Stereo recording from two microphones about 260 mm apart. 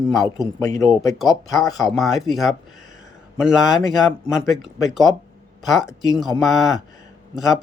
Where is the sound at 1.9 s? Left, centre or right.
Centre.